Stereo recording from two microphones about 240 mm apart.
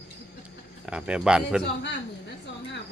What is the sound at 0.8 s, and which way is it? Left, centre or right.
Speech, centre.